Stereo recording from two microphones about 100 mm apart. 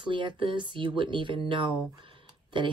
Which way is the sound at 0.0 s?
55° right (ahead or behind).